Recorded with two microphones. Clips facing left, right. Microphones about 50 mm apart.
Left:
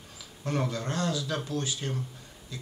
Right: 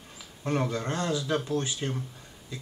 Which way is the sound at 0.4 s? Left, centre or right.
Right.